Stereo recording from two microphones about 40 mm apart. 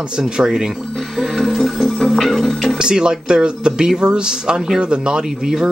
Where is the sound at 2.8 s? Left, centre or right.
Centre.